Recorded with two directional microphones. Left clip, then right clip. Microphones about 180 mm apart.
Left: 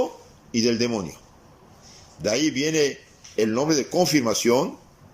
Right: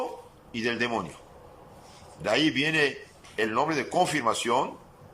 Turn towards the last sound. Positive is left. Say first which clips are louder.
# left 4 dB
turn(degrees=35)  # may be behind; listen again after turning